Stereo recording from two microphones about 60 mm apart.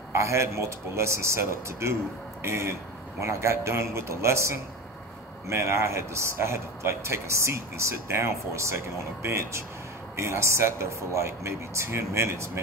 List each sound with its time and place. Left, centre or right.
0.1 s speech: right